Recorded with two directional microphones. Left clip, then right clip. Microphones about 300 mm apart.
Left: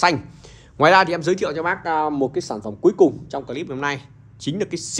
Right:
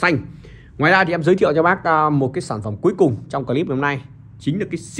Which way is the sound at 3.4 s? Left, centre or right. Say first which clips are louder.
Right 6 dB; centre.